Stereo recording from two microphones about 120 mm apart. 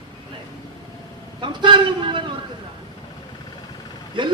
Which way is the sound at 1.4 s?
45° right (ahead or behind).